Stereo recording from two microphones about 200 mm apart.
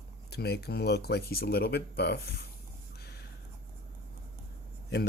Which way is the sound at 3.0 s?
55° left (ahead or behind).